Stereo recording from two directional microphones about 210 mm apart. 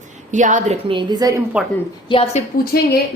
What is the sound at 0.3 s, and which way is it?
Speech, 35° right (ahead or behind).